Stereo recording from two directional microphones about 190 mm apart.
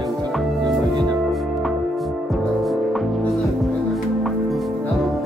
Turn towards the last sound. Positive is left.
turn(degrees=0)  # may be behind; listen again after turning